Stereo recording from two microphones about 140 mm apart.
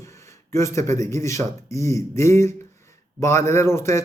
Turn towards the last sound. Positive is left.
turn(degrees=20)  # may be behind; listen again after turning